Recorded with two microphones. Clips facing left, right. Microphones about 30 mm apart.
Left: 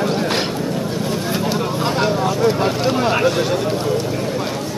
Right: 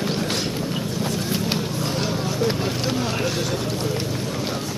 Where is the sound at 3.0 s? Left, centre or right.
Left.